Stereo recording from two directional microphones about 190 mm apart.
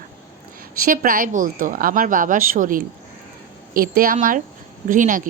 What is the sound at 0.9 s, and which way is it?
A woman's voice, 50° right (ahead or behind).